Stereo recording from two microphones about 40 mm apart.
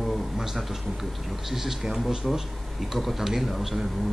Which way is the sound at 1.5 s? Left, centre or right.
Centre.